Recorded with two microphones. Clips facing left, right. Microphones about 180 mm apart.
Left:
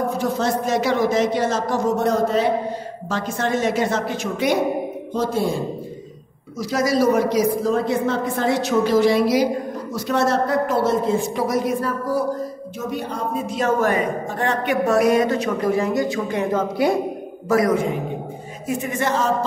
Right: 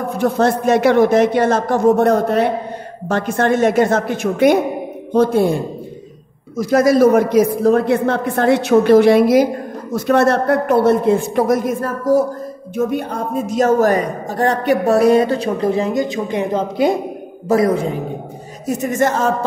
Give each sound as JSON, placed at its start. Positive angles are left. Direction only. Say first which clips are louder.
{"t": 0.2, "sound": "a man's voice", "louder": "right 6 dB", "side_deg": -60}
{"t": 18.7, "sound": "speech", "louder": "right 5 dB", "side_deg": -40}